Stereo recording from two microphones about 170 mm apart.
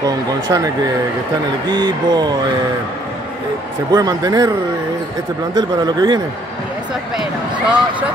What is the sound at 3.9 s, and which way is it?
Speech, 20° right (ahead or behind).